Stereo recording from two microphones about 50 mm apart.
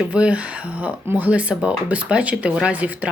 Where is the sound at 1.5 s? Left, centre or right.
Right.